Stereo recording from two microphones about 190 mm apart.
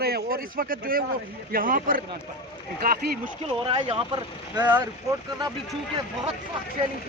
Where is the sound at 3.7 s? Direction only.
25° right (ahead or behind).